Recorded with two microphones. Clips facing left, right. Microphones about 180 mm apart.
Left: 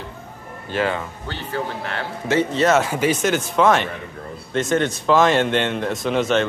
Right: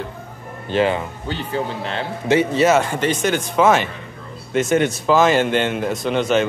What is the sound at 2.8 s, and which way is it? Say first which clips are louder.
Speech: even; 5° left (ahead or behind).